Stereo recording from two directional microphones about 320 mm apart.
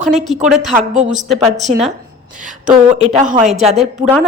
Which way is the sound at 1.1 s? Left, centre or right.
Centre.